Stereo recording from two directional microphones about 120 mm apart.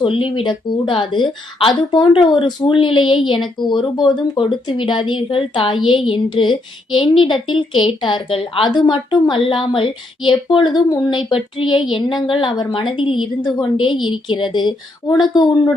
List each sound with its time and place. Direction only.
0.0 s a woman's voice: 45° left (ahead or behind)